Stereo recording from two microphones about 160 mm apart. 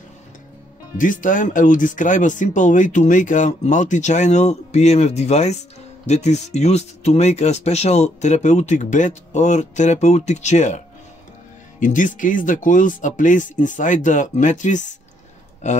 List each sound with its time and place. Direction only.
0.9 s speech: 55° left (ahead or behind)
11.8 s speech: 55° left (ahead or behind)